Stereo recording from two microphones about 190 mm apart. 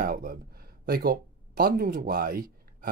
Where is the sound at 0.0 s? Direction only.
45° right (ahead or behind).